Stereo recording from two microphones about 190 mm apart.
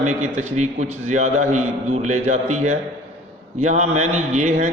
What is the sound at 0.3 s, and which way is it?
A man's voice, 35° right (ahead or behind).